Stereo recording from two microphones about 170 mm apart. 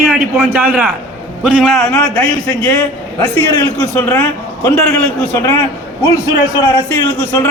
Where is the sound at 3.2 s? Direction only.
15° left (ahead or behind).